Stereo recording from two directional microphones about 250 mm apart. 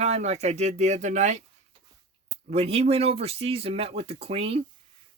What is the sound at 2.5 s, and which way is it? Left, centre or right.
Speech, right.